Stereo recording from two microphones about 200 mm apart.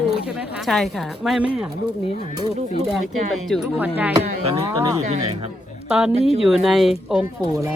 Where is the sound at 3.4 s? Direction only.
Centre (ahead or behind).